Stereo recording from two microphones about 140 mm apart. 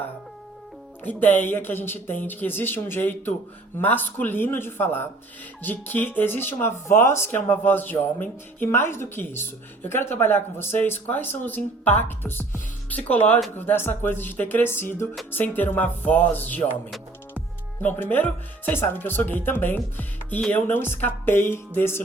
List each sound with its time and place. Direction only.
1.0 s speech: 15° left (ahead or behind)
17.8 s speech: 15° left (ahead or behind)